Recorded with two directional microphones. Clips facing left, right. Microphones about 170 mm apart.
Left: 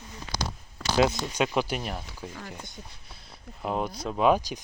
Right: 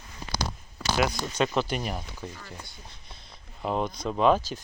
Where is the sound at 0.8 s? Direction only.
5° right (ahead or behind).